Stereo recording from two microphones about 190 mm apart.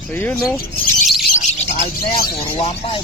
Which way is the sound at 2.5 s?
30° left (ahead or behind).